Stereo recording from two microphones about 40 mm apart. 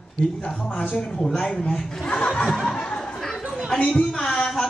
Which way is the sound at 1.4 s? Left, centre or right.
Centre.